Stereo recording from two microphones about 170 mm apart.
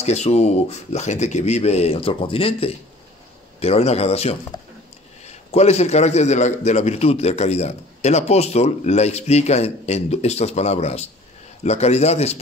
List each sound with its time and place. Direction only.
0.0 s a man's voice: 40° left (ahead or behind)
5.5 s a man's voice: 40° left (ahead or behind)